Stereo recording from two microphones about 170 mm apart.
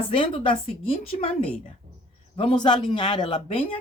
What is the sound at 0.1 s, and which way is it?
Speech, 30° left (ahead or behind).